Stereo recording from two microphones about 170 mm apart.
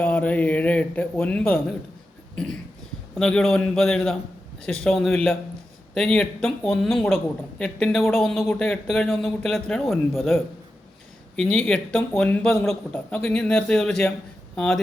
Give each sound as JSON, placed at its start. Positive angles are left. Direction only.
{"t": 0.0, "sound": "speech", "side_deg": 5}
{"t": 2.3, "sound": "a sound", "side_deg": 5}
{"t": 3.2, "sound": "speech", "side_deg": 5}
{"t": 11.3, "sound": "speech", "side_deg": 5}